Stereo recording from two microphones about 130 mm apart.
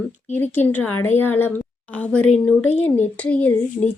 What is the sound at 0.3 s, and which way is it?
Speech, 15° left (ahead or behind).